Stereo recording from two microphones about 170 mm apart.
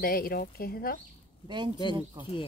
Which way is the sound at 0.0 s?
60° left (ahead or behind).